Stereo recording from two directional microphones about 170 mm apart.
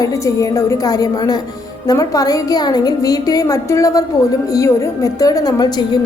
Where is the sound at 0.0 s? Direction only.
20° left (ahead or behind).